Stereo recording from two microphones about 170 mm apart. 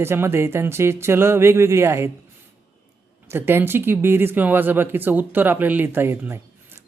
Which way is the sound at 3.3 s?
15° right (ahead or behind).